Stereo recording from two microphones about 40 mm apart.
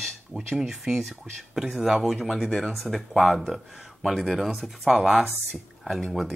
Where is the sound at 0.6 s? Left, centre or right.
Centre.